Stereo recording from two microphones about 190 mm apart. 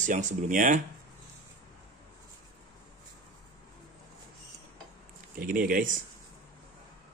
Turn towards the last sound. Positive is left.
turn(degrees=-45)  # may be behind; listen again after turning